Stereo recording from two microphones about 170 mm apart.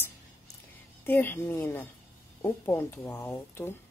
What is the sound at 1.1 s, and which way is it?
A woman's voice, 10° left (ahead or behind).